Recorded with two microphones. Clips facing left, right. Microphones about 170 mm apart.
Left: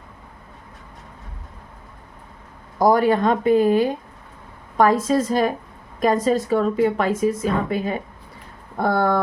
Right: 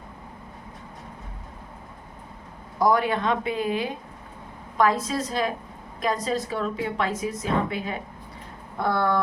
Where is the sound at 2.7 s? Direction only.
45° left (ahead or behind).